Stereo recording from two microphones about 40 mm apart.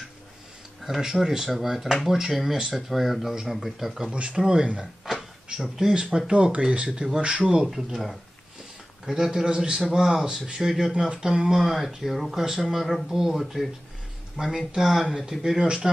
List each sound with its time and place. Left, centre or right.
0.8 s speech: centre
4.1 s speech: right
5.0 s a sound: centre
6.3 s speech: right
6.9 s speech: centre
7.2 s speech: right
7.6 s speech: centre
13.4 s speech: centre
14.3 s speech: centre